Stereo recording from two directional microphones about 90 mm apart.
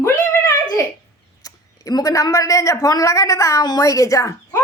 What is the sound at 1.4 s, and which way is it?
A woman's voice, 45° left (ahead or behind).